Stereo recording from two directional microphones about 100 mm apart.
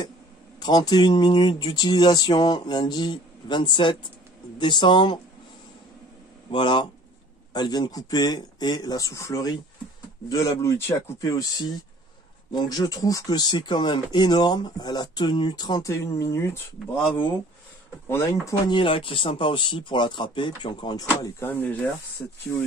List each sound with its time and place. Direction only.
0.6 s speech: 40° left (ahead or behind)
6.5 s speech: 55° left (ahead or behind)
16.2 s speech: 30° left (ahead or behind)
18.0 s speech: 25° left (ahead or behind)
18.7 s speech: 60° left (ahead or behind)
21.4 s speech: 20° left (ahead or behind)